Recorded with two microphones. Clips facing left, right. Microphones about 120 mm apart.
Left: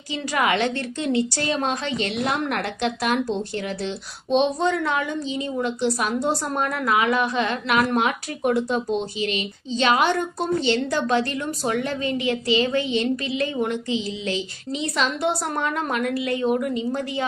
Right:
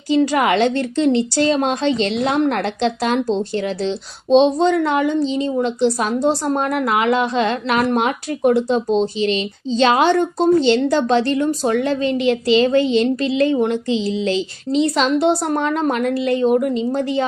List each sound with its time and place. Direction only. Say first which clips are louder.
0.1 s a woman's voice: right 8 dB; 30° right (ahead or behind)